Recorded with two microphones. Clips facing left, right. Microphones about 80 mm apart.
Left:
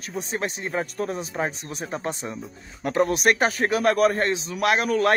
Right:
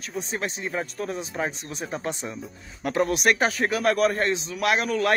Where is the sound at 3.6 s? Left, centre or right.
Left.